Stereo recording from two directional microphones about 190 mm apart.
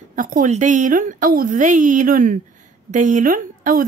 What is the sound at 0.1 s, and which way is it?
A woman's voice, 45° right (ahead or behind).